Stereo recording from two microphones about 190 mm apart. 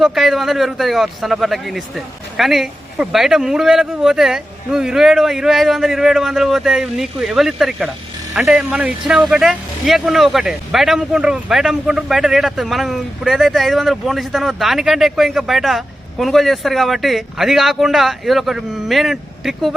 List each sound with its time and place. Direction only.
0.0 s speech: centre (ahead or behind)